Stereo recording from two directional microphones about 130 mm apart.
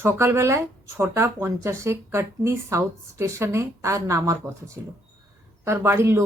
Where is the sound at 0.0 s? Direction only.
20° right (ahead or behind).